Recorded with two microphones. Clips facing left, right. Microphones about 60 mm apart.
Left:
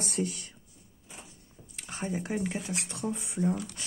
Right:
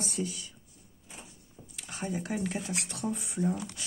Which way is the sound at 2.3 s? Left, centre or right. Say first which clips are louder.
Left 2 dB; centre.